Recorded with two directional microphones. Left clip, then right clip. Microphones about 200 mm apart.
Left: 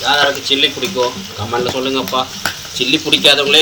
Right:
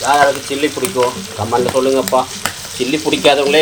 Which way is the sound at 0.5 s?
15° right (ahead or behind).